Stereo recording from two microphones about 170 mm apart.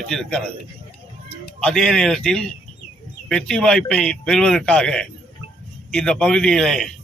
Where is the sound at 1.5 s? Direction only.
5° left (ahead or behind).